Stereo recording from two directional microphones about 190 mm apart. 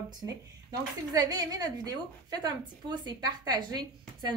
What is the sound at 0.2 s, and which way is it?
A woman's voice, 20° right (ahead or behind).